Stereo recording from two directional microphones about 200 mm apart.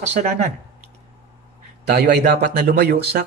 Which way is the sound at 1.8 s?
55° right (ahead or behind).